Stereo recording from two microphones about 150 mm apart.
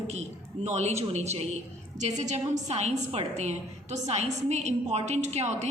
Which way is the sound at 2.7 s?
45° right (ahead or behind).